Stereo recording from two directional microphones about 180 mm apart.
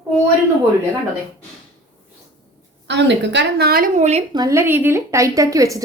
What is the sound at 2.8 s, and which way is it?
A woman's voice, 75° right (ahead or behind).